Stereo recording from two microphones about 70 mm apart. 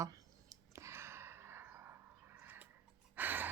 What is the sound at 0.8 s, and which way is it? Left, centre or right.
Sigh, right.